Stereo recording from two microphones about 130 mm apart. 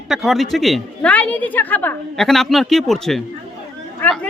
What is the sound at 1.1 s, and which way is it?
A woman's voice, 10° left (ahead or behind).